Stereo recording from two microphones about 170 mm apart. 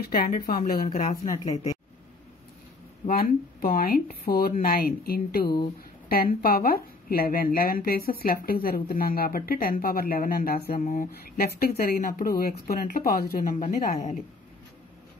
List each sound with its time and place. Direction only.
0.0 s speech: 60° left (ahead or behind)
3.1 s a woman's voice: 55° left (ahead or behind)